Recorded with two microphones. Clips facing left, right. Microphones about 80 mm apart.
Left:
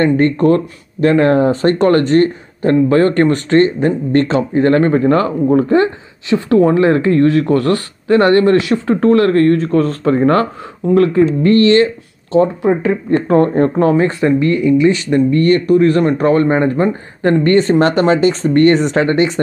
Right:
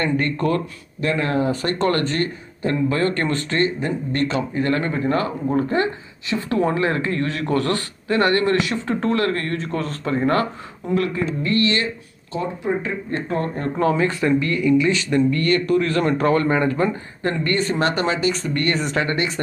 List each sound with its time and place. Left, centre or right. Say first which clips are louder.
0.0 s speech: left 9 dB; left
1.0 s speech: left 10 dB; left
1.5 s speech: left 9 dB; left
2.6 s speech: left 10 dB; left
3.0 s speech: left 9 dB; left
5.7 s speech: left 9 dB; left
6.5 s speech: left 10 dB; left
6.8 s speech: left 11 dB; left
10.9 s speech: left 11 dB; left
11.4 s speech: left 10 dB; left
12.4 s speech: left 11 dB; left